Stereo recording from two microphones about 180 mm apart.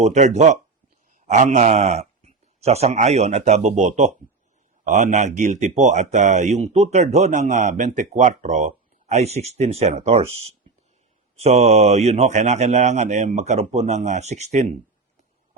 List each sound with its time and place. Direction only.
0.0 s speech: 40° right (ahead or behind)